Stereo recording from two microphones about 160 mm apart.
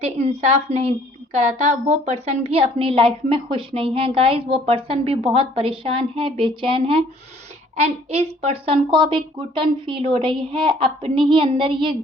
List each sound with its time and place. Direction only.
0.0 s a woman's voice: 40° right (ahead or behind)